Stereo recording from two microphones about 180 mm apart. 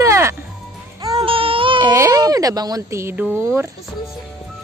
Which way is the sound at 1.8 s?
15° right (ahead or behind).